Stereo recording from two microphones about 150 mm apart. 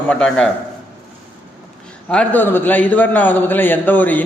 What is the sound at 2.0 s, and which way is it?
A man's voice, 10° left (ahead or behind).